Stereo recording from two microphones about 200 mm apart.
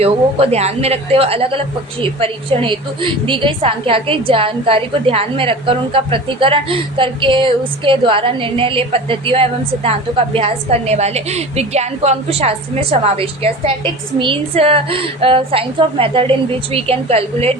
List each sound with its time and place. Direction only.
0.0 s a woman's voice: 30° right (ahead or behind)